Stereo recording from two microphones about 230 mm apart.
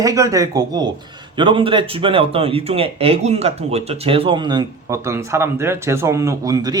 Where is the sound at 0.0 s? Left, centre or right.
Centre.